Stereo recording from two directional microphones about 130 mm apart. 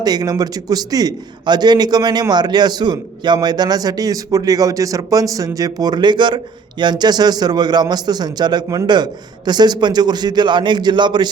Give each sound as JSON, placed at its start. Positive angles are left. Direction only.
{"t": 0.0, "sound": "a man's voice", "side_deg": -30}